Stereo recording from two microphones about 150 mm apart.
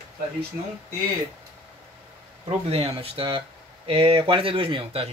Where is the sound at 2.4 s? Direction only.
40° right (ahead or behind).